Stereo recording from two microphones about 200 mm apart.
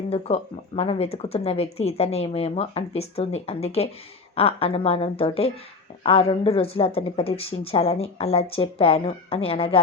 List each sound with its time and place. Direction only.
0.3 s speech: 30° left (ahead or behind)